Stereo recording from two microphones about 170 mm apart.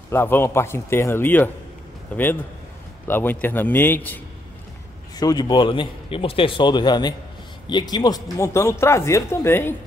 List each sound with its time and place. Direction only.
0.1 s speech: 15° left (ahead or behind)
5.1 s a man's voice: 25° left (ahead or behind)